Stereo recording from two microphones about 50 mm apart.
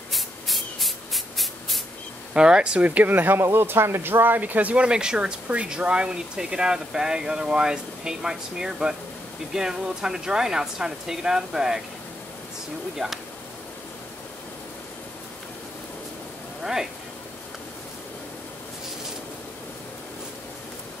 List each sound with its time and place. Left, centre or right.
0.1 s spray: centre
2.3 s speech: centre; by 3.3 s right
3.5 s speech: right
4.8 s speech: centre
12.9 s speech: centre